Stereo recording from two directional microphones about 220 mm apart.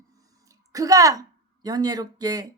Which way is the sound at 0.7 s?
15° right (ahead or behind).